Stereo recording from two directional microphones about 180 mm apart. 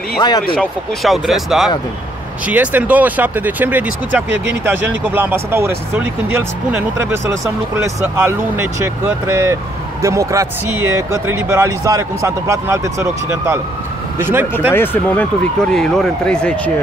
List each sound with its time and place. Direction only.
0.6 s speech: centre (ahead or behind)
14.7 s speech: 10° left (ahead or behind)